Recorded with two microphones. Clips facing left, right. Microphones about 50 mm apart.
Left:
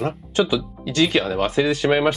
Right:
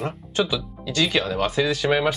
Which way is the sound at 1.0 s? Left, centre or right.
Centre.